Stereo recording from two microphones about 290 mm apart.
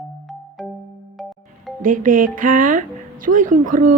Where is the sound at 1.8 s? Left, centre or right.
Right.